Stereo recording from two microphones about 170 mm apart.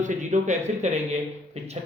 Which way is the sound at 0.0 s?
45° right (ahead or behind).